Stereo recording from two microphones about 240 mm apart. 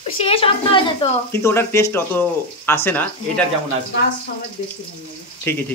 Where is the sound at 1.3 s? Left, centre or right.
Centre.